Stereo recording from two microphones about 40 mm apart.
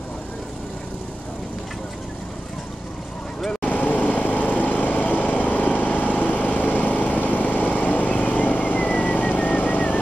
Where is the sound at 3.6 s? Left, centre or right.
Left.